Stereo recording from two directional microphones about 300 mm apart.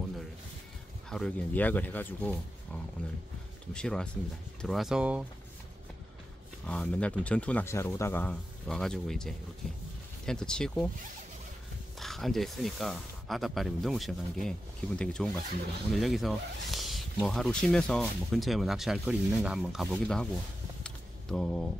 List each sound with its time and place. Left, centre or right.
1.1 s speech: centre
3.7 s speech: centre
6.6 s speech: centre
12.0 s speech: centre
20.8 s a sound: centre